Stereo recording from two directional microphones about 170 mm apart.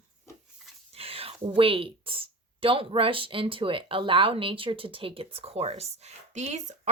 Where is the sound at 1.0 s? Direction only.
35° right (ahead or behind).